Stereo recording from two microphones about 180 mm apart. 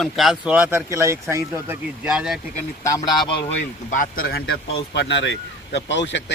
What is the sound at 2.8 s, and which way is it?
Speech, 25° left (ahead or behind).